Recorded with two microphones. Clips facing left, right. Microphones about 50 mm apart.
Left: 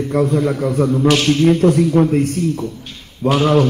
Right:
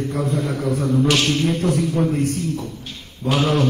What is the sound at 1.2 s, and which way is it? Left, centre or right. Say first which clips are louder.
Speech: left 7 dB; left.